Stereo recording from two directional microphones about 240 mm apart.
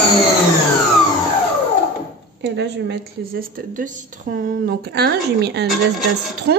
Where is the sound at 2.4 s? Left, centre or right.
Right.